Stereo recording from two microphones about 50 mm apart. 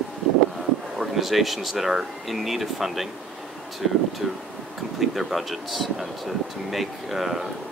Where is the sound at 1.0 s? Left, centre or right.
Centre.